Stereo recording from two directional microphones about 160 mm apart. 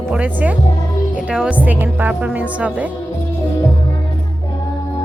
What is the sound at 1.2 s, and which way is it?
Music, 5° right (ahead or behind).